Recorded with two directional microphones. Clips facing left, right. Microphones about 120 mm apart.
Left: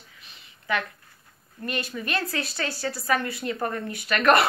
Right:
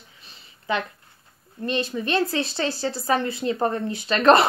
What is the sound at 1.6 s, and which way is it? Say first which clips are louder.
A woman's voice: right 5 dB; 25° right (ahead or behind).